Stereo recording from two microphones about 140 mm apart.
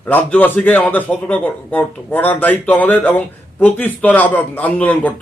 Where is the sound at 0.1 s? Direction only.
10° left (ahead or behind).